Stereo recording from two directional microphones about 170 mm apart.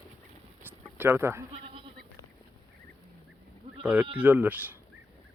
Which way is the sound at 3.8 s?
5° right (ahead or behind).